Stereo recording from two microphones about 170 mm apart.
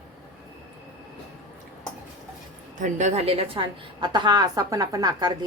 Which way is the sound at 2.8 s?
45° right (ahead or behind).